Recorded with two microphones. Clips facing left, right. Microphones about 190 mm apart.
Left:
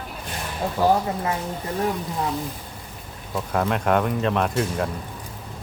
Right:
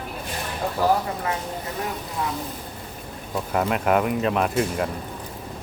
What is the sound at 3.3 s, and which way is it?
Speech, 5° right (ahead or behind).